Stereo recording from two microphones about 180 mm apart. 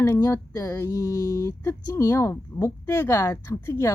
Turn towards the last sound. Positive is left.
turn(degrees=15)  # may be behind; listen again after turning